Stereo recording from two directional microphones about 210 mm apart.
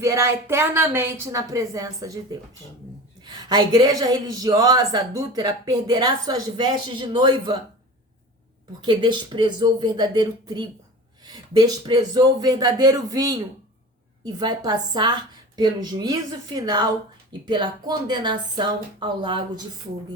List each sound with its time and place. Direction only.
0.0 s a woman's voice: 15° right (ahead or behind)
3.2 s a woman's voice: 20° right (ahead or behind)
8.8 s a woman's voice: 20° right (ahead or behind)